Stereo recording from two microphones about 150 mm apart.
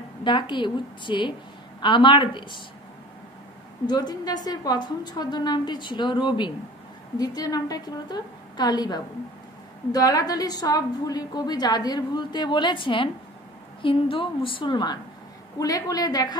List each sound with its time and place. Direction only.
0.2 s a woman's voice: 30° left (ahead or behind)
3.8 s a woman's voice: 25° left (ahead or behind)